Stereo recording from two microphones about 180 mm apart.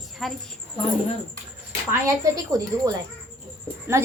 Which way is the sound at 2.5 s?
20° right (ahead or behind).